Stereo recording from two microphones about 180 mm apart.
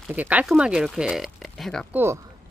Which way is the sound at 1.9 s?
10° right (ahead or behind).